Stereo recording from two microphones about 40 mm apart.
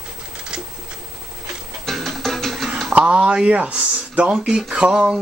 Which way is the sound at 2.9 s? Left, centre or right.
Right.